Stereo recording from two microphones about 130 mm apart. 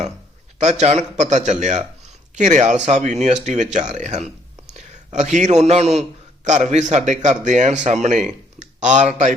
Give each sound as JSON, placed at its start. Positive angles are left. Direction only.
{"t": 0.6, "sound": "a man's voice", "side_deg": -60}